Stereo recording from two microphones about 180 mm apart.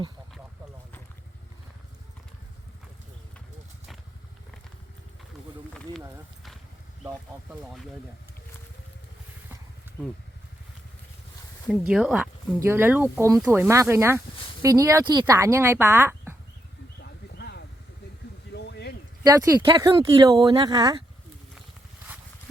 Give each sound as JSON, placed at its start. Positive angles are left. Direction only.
{"t": 11.7, "sound": "speech", "side_deg": -5}
{"t": 12.5, "sound": "speech", "side_deg": -15}
{"t": 17.0, "sound": "a sound", "side_deg": 65}
{"t": 19.2, "sound": "speech", "side_deg": -20}